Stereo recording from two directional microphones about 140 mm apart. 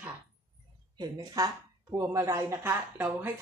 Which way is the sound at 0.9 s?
30° right (ahead or behind).